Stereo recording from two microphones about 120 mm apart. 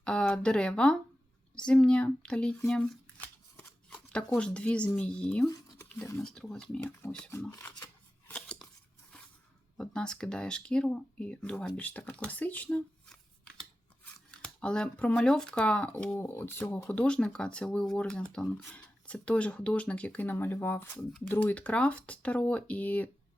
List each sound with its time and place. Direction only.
0.0 s speech: 10° left (ahead or behind)
7.2 s speech: 20° left (ahead or behind)
8.3 s scissors: 5° left (ahead or behind)
9.7 s speech: 5° left (ahead or behind)
12.6 s shuffling cards: 5° left (ahead or behind)
14.0 s speech: 10° left (ahead or behind)